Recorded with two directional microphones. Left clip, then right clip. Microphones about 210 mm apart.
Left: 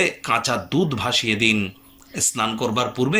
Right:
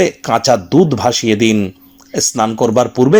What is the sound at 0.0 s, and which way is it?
Speech, 50° right (ahead or behind).